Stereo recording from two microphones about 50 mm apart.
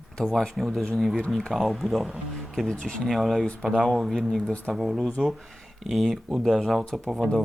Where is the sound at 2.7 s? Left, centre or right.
Centre.